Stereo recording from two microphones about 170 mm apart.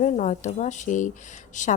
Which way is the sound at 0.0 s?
45° left (ahead or behind).